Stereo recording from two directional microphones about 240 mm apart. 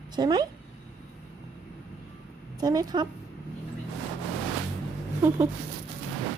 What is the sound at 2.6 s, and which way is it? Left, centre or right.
Speech, centre.